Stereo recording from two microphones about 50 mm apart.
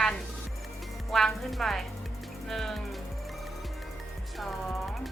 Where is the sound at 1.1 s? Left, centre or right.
Centre.